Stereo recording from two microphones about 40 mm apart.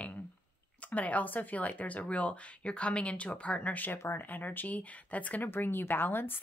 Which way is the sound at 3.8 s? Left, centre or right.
Left.